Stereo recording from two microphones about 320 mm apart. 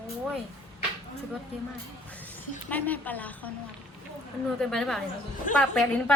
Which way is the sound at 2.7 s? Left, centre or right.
Centre.